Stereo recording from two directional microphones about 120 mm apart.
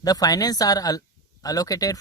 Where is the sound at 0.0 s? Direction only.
30° left (ahead or behind).